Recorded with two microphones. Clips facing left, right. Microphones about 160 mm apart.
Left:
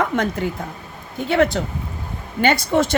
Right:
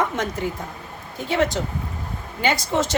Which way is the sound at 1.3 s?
60° left (ahead or behind).